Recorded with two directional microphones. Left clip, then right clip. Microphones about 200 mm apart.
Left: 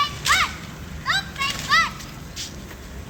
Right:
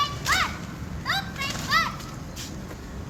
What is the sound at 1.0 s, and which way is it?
Children playing, 15° right (ahead or behind).